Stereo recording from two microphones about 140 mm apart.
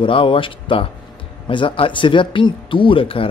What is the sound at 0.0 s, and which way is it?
Speech, 40° left (ahead or behind).